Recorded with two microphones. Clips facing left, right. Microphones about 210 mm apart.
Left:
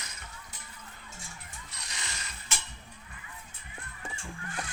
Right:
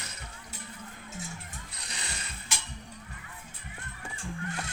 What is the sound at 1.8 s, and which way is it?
Ratchet, 30° right (ahead or behind).